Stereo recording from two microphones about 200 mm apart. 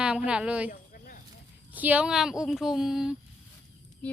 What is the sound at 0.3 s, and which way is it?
Speech, 5° right (ahead or behind).